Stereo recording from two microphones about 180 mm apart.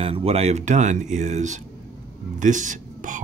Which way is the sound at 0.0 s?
35° right (ahead or behind).